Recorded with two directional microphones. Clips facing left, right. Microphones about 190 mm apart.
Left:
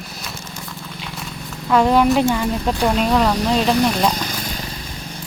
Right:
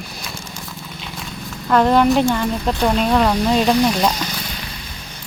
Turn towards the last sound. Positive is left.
turn(degrees=45)  # may be behind; listen again after turning